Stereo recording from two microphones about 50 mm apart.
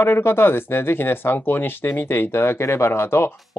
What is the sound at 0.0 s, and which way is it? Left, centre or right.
Speech, left.